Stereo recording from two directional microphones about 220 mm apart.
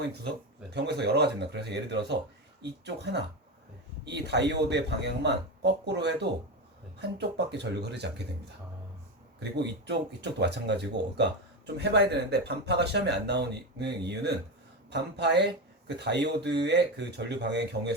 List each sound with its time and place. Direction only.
0.7 s speech: 50° right (ahead or behind)
9.4 s speech: 50° right (ahead or behind)